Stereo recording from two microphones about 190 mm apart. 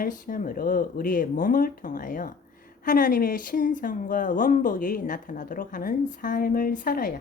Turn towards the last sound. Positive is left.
turn(degrees=50)  # may be behind; listen again after turning